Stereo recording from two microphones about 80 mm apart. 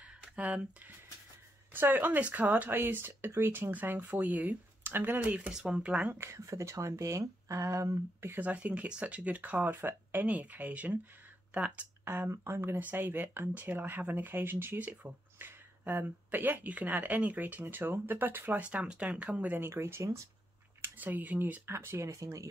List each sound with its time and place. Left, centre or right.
0.2 s a sound: centre
1.7 s speech: right
6.1 s speech: right
8.4 s speech: centre
12.0 s speech: right
20.8 s speech: right
21.6 s speech: right